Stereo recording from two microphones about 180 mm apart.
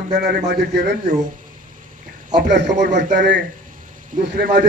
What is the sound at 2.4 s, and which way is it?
A man's voice, 75° right (ahead or behind).